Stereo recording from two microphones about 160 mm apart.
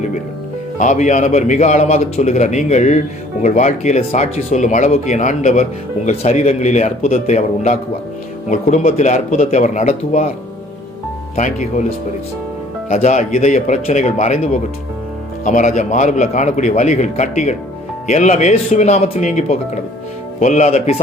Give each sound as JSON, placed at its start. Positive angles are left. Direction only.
{"t": 0.8, "sound": "a man's voice", "side_deg": 50}
{"t": 11.3, "sound": "a man's voice", "side_deg": 50}
{"t": 12.9, "sound": "a man's voice", "side_deg": 50}